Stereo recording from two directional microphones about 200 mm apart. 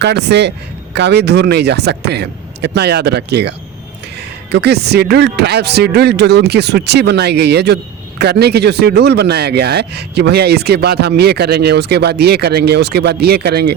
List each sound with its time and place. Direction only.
0.0 s speech: 55° right (ahead or behind)
4.5 s speech: 55° right (ahead or behind)